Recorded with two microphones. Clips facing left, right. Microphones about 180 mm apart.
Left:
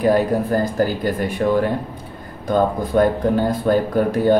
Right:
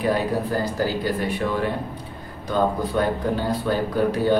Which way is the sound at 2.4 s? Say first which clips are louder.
Left 4 dB; 50° left (ahead or behind).